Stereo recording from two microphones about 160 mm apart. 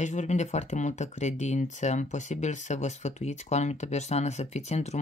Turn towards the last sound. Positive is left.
turn(degrees=40)  # may be behind; listen again after turning